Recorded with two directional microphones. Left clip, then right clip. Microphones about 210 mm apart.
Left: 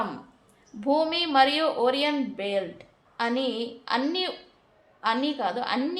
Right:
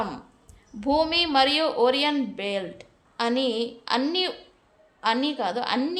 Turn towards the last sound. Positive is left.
turn(degrees=-25)  # may be behind; listen again after turning